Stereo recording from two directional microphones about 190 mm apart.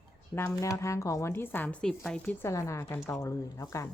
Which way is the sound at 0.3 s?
15° left (ahead or behind).